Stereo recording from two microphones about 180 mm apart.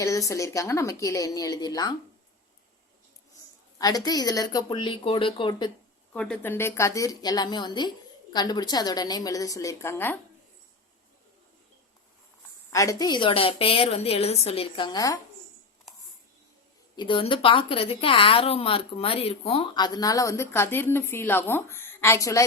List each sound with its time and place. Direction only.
0.0 s a woman's voice: 20° left (ahead or behind)
3.8 s a woman's voice: 20° left (ahead or behind)
6.1 s a woman's voice: 5° left (ahead or behind)
12.7 s a woman's voice: 15° left (ahead or behind)
17.0 s a woman's voice: 30° left (ahead or behind)